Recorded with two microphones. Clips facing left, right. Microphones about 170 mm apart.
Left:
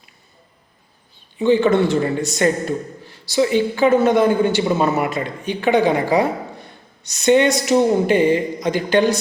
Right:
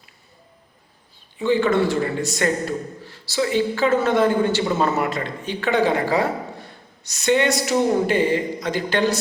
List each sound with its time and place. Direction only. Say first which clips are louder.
1.4 s a man's voice: left 4 dB; 20° left (ahead or behind)